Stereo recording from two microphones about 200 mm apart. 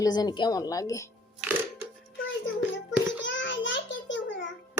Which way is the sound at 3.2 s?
65° left (ahead or behind).